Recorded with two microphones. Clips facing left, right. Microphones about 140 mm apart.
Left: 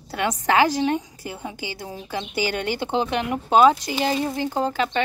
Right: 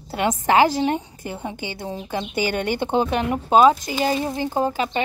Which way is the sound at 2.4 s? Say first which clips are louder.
Right 2 dB; 50° right (ahead or behind).